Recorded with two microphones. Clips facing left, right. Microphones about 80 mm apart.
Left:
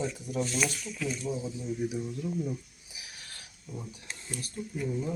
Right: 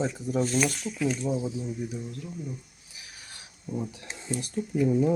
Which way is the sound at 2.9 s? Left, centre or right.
Centre.